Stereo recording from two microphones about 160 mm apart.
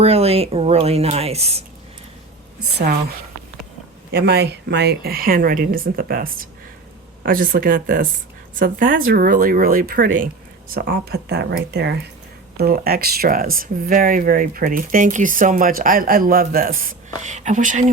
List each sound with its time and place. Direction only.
0.0 s speech: 40° right (ahead or behind)
4.1 s speech: 90° right
12.5 s speech: 75° right (ahead or behind)
17.2 s speech: 50° right (ahead or behind)